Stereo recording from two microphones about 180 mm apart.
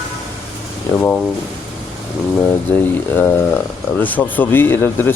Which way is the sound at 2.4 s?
10° left (ahead or behind).